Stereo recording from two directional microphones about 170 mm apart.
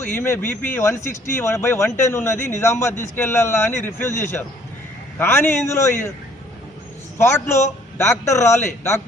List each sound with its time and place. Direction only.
0.2 s a man's voice: 15° left (ahead or behind)
7.2 s a man's voice: 15° left (ahead or behind)